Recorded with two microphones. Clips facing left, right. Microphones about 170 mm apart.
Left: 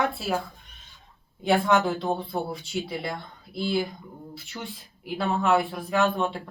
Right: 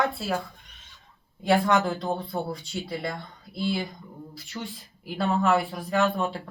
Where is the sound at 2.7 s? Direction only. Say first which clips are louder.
Left 6 dB; 10° left (ahead or behind).